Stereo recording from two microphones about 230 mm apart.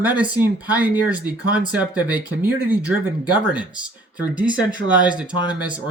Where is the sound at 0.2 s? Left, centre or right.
Centre.